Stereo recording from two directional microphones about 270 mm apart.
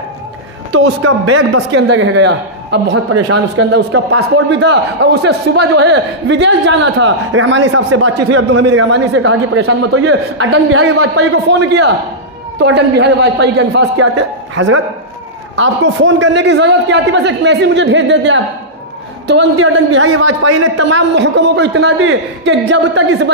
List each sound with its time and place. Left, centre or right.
1.0 s a man's voice: right
3.1 s speech: right
3.5 s a man's voice: right
11.5 s a man's voice: right